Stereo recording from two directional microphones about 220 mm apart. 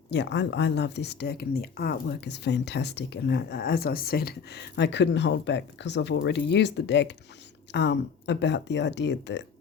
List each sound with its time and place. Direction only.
0.1 s speech: 50° left (ahead or behind)